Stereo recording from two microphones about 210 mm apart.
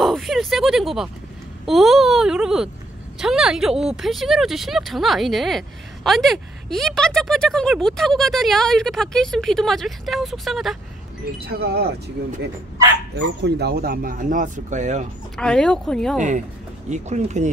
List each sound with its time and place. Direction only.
0.0 s a sound: centre (ahead or behind)
1.7 s speech: centre (ahead or behind)
11.3 s speech: 50° right (ahead or behind)
15.3 s speech: 5° left (ahead or behind)
16.2 s speech: 35° right (ahead or behind)